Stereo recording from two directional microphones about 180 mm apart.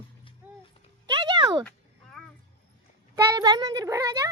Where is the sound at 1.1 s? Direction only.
25° right (ahead or behind).